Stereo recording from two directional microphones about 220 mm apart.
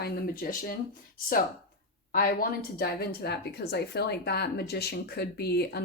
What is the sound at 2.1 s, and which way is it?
Speech, 45° left (ahead or behind).